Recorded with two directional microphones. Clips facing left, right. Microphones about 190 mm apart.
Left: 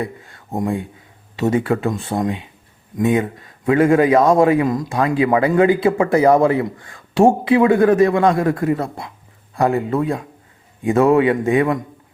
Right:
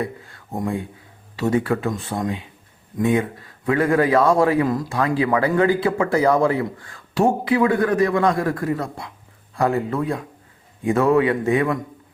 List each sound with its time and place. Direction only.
0.5 s a man's voice: 25° left (ahead or behind)